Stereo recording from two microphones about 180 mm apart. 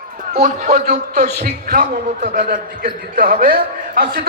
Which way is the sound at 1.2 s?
55° right (ahead or behind).